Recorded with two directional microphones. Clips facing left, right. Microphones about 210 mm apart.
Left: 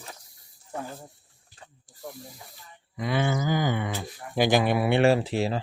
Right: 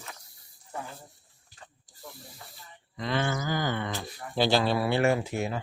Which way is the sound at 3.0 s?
10° left (ahead or behind).